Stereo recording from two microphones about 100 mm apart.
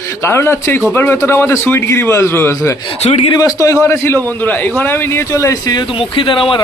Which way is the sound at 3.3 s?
40° left (ahead or behind).